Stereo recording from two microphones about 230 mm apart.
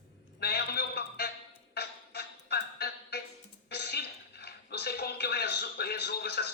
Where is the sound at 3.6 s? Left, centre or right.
Left.